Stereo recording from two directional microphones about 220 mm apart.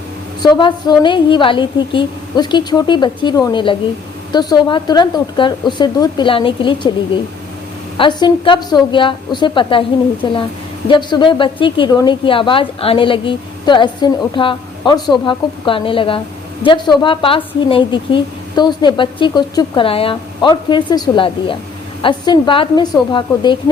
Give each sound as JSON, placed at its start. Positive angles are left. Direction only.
{"t": 0.4, "sound": "a woman's voice", "side_deg": 20}
{"t": 7.9, "sound": "a woman's voice", "side_deg": 20}